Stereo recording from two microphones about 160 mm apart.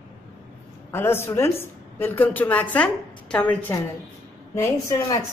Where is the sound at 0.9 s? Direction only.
15° left (ahead or behind).